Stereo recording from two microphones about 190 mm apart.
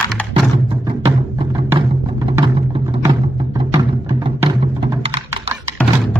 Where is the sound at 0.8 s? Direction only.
25° right (ahead or behind).